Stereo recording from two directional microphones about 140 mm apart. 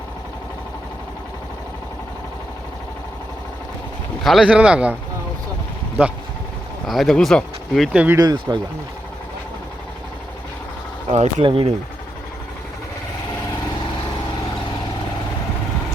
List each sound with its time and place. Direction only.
4.2 s speech: centre (ahead or behind)
6.8 s speech: centre (ahead or behind)
7.9 s speech: 10° right (ahead or behind)
8.2 s speech: 30° right (ahead or behind)
11.1 s speech: 55° right (ahead or behind)
11.4 s speech: 40° right (ahead or behind)